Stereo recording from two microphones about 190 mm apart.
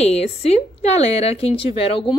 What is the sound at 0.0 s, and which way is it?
A woman's voice, 35° left (ahead or behind).